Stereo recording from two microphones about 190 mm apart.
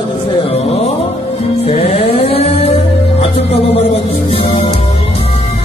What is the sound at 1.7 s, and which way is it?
Music, 30° left (ahead or behind).